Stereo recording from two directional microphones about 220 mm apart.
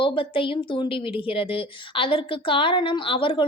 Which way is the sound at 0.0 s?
25° left (ahead or behind).